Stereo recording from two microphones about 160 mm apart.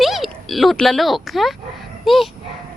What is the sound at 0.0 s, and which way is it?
Speech, centre (ahead or behind).